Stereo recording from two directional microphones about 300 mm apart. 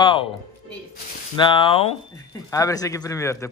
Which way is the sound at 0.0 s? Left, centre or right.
Centre.